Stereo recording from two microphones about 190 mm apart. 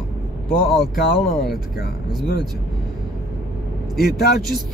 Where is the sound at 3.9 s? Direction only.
50° left (ahead or behind).